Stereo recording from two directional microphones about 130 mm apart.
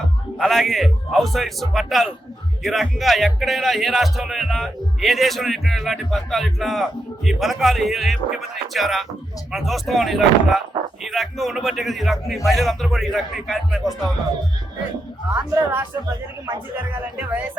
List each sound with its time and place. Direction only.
0.3 s speech: centre (ahead or behind)
15.4 s speech: 15° right (ahead or behind)
16.9 s speech: 15° right (ahead or behind)